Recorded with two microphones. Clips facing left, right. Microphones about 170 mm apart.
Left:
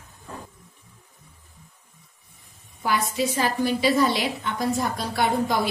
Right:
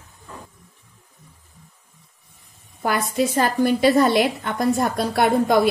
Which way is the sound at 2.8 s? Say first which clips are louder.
Right 3 dB; 50° right (ahead or behind).